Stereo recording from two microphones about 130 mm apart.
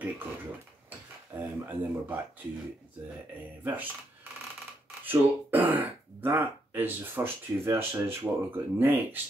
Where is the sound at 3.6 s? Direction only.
15° right (ahead or behind).